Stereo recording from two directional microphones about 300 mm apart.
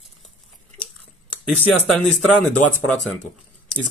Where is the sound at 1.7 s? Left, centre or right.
Centre.